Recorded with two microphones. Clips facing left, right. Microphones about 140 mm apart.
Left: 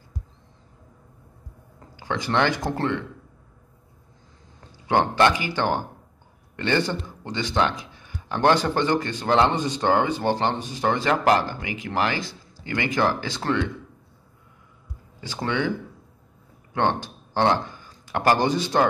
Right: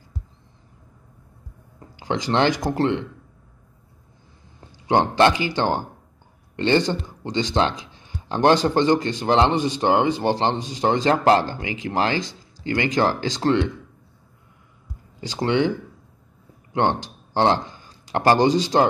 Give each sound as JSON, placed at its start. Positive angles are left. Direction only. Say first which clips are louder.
{"t": 2.0, "sound": "a man's voice", "louder": "right 2 dB", "side_deg": -20}
{"t": 4.8, "sound": "a man's voice", "louder": "right 2 dB", "side_deg": -25}
{"t": 15.3, "sound": "a man's voice", "louder": "right 5 dB", "side_deg": -20}
{"t": 17.3, "sound": "a sound", "louder": "right 2 dB", "side_deg": -25}
{"t": 18.7, "sound": "speech", "louder": "right 2 dB", "side_deg": -35}